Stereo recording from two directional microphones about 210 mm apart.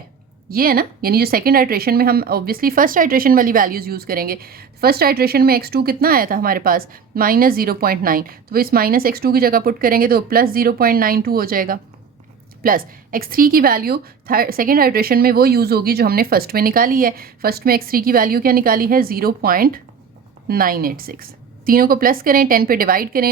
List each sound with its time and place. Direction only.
0.5 s speech: 45° right (ahead or behind)